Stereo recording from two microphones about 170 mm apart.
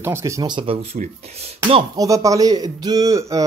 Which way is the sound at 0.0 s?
15° right (ahead or behind).